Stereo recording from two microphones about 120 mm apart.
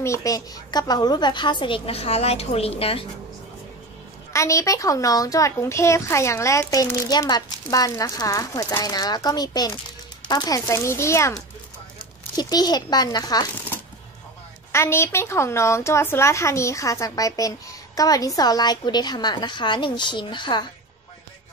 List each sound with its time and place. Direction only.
0.0 s speech: 25° left (ahead or behind)
1.9 s a woman's voice: 55° left (ahead or behind)
4.3 s a woman's voice: 25° left (ahead or behind)
12.4 s speech: 35° left (ahead or behind)
14.7 s a woman's voice: 20° left (ahead or behind); by 20.6 s 40° left (ahead or behind)